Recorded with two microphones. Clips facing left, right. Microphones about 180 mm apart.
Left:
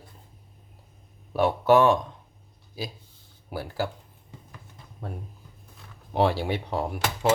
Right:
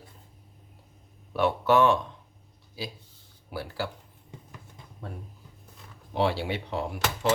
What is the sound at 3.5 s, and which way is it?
Speech, 45° left (ahead or behind).